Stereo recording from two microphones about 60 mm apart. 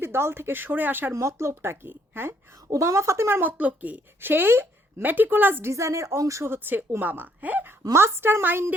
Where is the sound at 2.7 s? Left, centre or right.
Right.